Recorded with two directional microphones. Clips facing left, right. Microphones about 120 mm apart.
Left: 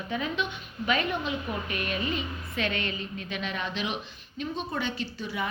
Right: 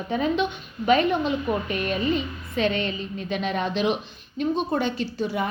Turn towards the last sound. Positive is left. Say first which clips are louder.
# right 7 dB
turn(degrees=-40)  # may be behind; listen again after turning